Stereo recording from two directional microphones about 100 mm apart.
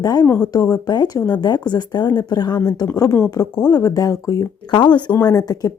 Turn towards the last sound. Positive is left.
turn(degrees=40)  # may be behind; listen again after turning